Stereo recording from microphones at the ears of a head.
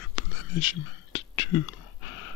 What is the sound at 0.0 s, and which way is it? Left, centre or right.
Whispering, left.